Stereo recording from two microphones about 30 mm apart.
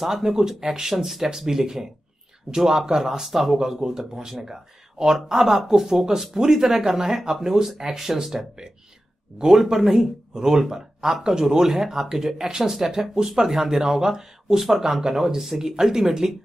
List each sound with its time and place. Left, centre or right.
0.2 s speech: centre
5.1 s speech: centre
8.0 s speech: centre